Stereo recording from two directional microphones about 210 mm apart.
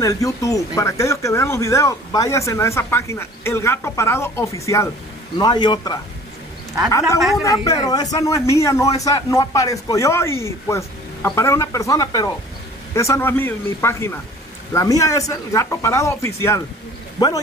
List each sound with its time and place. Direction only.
0.0 s speech: 15° left (ahead or behind)
7.2 s speech: centre (ahead or behind)
7.4 s speech: 15° left (ahead or behind)